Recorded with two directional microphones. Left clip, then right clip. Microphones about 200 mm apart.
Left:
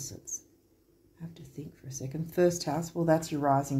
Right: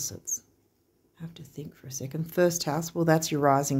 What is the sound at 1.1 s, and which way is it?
Speech, 40° right (ahead or behind).